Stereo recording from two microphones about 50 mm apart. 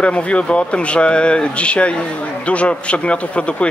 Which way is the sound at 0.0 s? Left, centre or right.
Left.